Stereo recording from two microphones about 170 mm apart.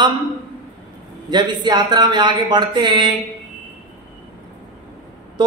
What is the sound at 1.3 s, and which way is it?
A man's voice, 25° right (ahead or behind).